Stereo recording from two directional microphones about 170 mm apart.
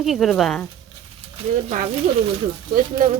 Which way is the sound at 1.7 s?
45° right (ahead or behind).